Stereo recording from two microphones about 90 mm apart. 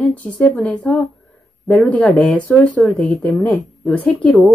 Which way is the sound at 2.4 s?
15° left (ahead or behind).